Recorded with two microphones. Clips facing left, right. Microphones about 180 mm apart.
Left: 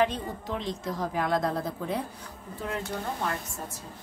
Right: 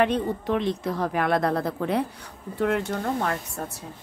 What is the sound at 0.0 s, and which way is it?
Speech, 60° right (ahead or behind).